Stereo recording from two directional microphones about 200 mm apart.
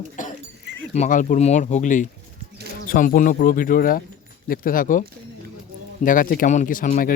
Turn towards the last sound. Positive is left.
turn(degrees=45)  # may be behind; listen again after turning